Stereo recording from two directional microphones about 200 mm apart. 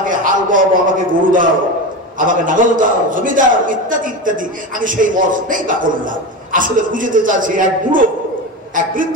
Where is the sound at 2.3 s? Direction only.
40° right (ahead or behind).